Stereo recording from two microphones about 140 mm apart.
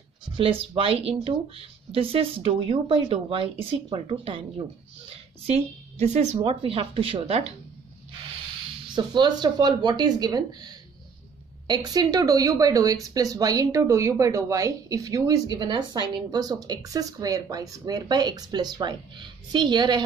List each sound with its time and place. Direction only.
0.4 s a woman's voice: 40° right (ahead or behind)
8.9 s a woman's voice: 30° right (ahead or behind)